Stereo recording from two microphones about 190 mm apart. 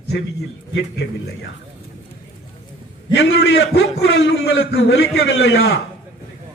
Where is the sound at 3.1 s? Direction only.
60° left (ahead or behind).